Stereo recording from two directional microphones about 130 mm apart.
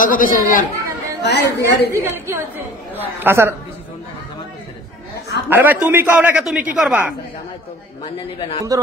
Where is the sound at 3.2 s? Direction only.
20° right (ahead or behind).